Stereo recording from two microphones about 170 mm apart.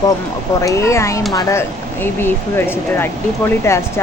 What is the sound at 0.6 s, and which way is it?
Speech, 20° left (ahead or behind).